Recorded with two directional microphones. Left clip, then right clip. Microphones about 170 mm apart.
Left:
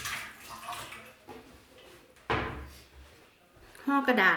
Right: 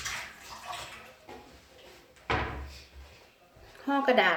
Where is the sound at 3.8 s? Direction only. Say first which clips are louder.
Even; 50° left (ahead or behind).